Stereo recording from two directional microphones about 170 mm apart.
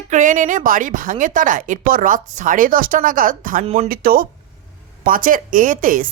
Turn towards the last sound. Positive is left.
turn(degrees=-55)  # may be behind; listen again after turning